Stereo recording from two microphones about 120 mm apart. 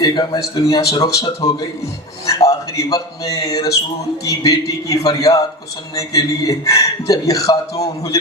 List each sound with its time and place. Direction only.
0.0 s a man's voice: 35° left (ahead or behind)